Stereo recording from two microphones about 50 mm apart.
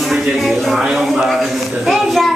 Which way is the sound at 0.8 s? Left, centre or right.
Centre.